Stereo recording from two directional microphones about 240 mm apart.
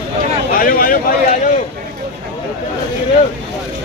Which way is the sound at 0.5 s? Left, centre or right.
Left.